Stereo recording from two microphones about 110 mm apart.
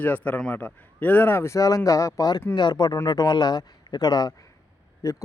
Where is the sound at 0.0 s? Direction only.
15° left (ahead or behind).